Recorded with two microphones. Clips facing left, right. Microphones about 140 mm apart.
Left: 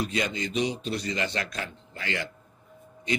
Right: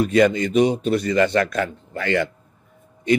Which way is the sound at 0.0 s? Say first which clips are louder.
Right 13 dB; 55° right (ahead or behind).